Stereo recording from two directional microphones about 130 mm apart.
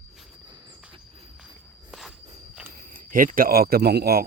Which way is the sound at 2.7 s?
90° right.